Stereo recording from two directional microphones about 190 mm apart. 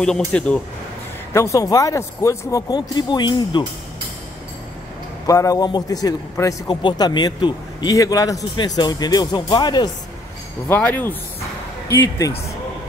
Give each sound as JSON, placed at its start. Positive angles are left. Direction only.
{"t": 0.0, "sound": "speech", "side_deg": 5}
{"t": 1.3, "sound": "speech", "side_deg": 15}
{"t": 5.2, "sound": "a man's voice", "side_deg": 20}
{"t": 10.7, "sound": "speech", "side_deg": 10}